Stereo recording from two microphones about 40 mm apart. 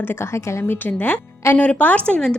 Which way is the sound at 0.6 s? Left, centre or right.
Left.